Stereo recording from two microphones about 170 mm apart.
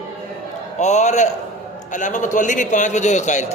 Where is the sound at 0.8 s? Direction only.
45° left (ahead or behind).